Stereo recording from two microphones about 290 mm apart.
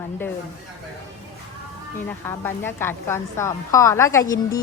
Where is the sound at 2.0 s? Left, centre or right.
Centre.